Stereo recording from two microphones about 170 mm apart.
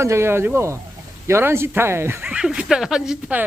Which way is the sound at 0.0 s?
15° right (ahead or behind).